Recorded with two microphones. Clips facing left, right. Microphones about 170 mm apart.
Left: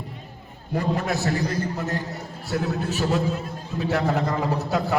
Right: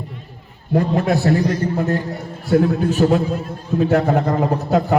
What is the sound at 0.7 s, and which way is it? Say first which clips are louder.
Speech: right 7 dB; 55° right (ahead or behind).